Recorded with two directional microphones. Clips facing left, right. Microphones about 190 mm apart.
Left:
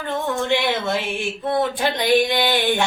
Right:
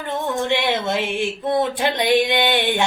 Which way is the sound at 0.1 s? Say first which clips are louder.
Even; 20° right (ahead or behind).